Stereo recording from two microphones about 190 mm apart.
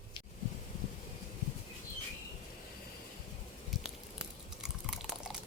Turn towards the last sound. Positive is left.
turn(degrees=0)  # may be behind; listen again after turning